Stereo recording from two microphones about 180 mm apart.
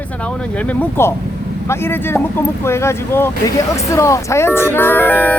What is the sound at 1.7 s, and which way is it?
Speech, 10° left (ahead or behind).